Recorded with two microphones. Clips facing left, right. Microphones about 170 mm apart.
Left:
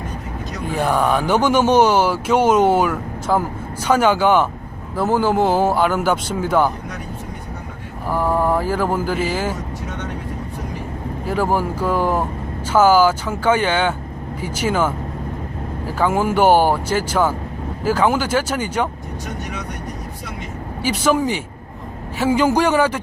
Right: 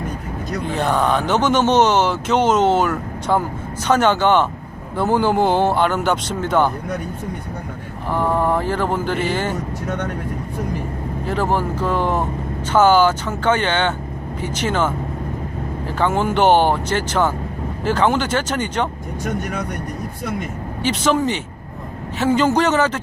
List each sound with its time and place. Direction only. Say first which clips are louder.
0.8 s a man's voice: left 1 dB; 10° left (ahead or behind)
8.1 s speech: even; 5° left (ahead or behind)
11.3 s speech: left 1 dB; 10° left (ahead or behind)
16.0 s speech: left 1 dB; 10° left (ahead or behind)
19.2 s speech: right 6 dB; 55° right (ahead or behind)
20.8 s speech: even; 10° left (ahead or behind)